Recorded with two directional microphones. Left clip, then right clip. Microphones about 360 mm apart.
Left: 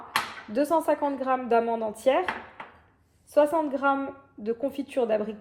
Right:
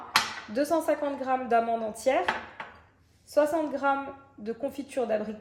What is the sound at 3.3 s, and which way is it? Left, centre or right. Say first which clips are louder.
A woman's voice: left 3 dB; centre.